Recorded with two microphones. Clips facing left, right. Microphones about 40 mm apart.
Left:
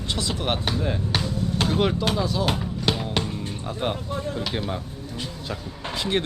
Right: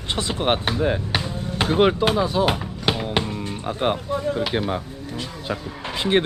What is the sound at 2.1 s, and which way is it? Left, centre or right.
Music, right.